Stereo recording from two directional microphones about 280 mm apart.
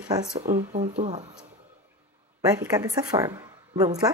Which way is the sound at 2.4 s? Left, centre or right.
Centre.